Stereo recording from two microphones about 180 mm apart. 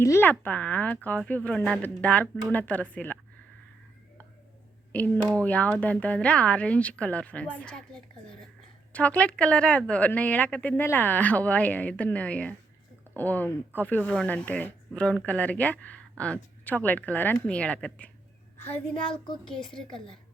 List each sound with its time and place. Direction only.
0.0 s speech: 15° left (ahead or behind)
4.9 s a woman's voice: 10° left (ahead or behind)